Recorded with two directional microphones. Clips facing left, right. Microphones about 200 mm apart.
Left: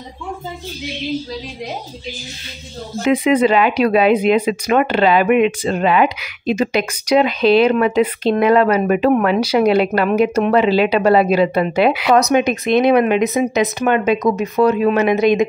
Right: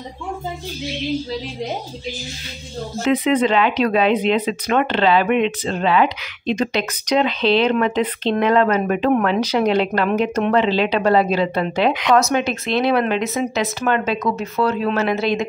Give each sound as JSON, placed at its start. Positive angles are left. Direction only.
{"t": 3.0, "sound": "speech", "side_deg": 10}